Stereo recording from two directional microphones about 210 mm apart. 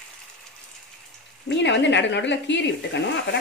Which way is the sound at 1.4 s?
60° left (ahead or behind).